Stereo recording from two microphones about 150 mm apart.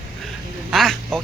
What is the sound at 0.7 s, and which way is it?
Quack, centre (ahead or behind).